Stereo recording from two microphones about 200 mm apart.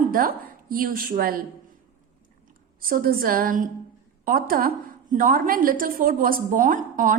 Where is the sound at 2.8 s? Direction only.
45° right (ahead or behind).